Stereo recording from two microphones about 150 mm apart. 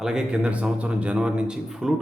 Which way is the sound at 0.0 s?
5° right (ahead or behind).